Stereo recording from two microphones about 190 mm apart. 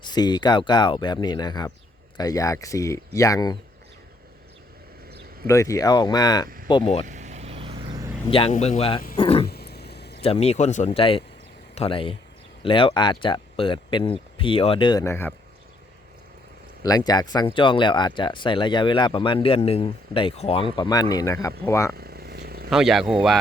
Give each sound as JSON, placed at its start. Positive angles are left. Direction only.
{"t": 0.0, "sound": "speech", "side_deg": 20}
{"t": 5.5, "sound": "speech", "side_deg": 15}
{"t": 7.1, "sound": "vehicle", "side_deg": -40}
{"t": 8.3, "sound": "speech", "side_deg": 30}
{"t": 9.1, "sound": "wild animals", "side_deg": 30}
{"t": 9.5, "sound": "a sound", "side_deg": 55}
{"t": 10.2, "sound": "speech", "side_deg": 35}
{"t": 16.8, "sound": "speech", "side_deg": 20}
{"t": 21.9, "sound": "vehicle", "side_deg": -55}
{"t": 22.7, "sound": "speech", "side_deg": 0}